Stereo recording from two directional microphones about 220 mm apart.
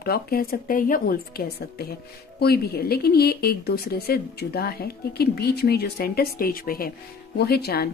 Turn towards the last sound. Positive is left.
turn(degrees=45)  # may be behind; listen again after turning